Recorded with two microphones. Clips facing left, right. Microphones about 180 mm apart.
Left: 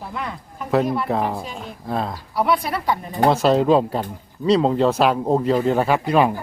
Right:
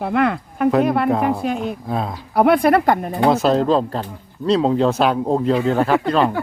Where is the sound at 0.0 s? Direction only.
70° right (ahead or behind).